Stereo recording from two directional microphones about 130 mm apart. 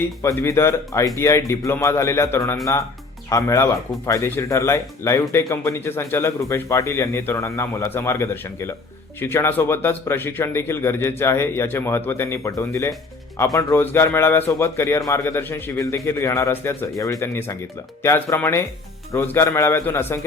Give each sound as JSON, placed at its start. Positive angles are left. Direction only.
{"t": 0.2, "sound": "a man's voice", "side_deg": 20}